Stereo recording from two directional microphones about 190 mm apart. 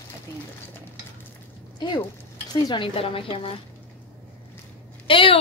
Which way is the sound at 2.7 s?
30° left (ahead or behind).